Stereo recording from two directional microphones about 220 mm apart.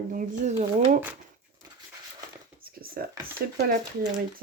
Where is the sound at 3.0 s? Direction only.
45° right (ahead or behind).